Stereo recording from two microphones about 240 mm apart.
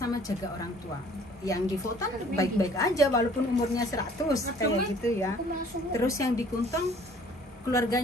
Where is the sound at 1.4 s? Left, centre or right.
Centre.